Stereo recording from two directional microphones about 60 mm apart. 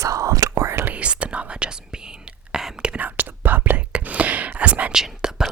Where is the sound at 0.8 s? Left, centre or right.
Right.